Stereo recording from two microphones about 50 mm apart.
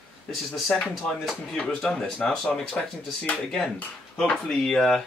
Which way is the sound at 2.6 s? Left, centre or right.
Centre.